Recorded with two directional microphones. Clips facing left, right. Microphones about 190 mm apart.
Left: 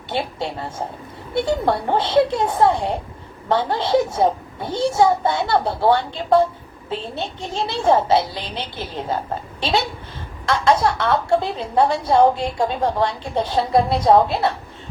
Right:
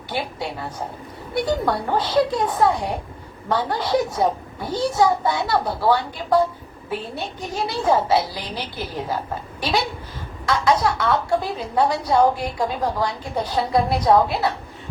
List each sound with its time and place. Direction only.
0.1 s a woman's voice: 25° left (ahead or behind)